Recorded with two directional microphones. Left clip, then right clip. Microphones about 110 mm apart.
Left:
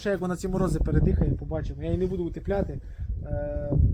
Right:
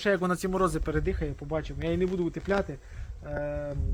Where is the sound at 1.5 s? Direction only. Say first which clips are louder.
Right 1 dB; 5° right (ahead or behind).